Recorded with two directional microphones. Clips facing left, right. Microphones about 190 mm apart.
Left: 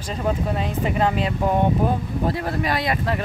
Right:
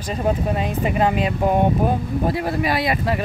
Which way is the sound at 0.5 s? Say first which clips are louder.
Right 2 dB; 15° right (ahead or behind).